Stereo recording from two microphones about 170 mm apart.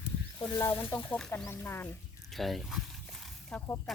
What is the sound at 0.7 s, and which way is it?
Speech, 15° left (ahead or behind).